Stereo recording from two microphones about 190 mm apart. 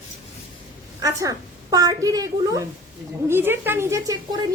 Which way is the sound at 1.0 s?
15° right (ahead or behind).